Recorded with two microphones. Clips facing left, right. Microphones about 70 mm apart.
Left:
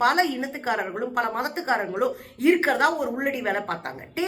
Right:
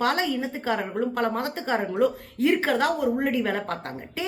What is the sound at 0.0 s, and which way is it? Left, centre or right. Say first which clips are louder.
A woman's voice: left 3 dB; left.